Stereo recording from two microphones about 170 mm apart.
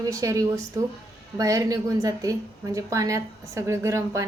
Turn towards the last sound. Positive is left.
turn(degrees=-15)  # may be behind; listen again after turning